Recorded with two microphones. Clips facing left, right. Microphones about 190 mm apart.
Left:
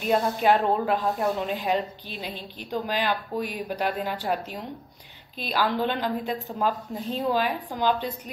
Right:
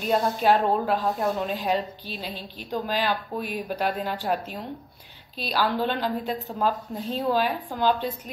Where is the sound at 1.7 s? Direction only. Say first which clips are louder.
Even; 20° left (ahead or behind).